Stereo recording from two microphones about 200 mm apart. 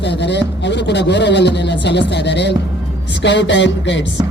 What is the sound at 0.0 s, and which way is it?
Speech, 60° left (ahead or behind).